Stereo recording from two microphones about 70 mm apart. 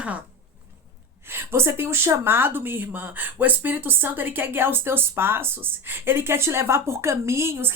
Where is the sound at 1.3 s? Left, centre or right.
Right.